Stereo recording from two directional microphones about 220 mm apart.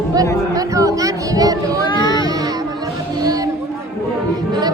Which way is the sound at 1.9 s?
20° left (ahead or behind).